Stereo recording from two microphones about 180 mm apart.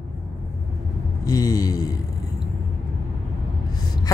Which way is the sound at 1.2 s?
20° left (ahead or behind).